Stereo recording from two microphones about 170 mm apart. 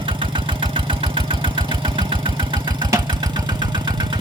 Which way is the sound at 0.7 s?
30° right (ahead or behind).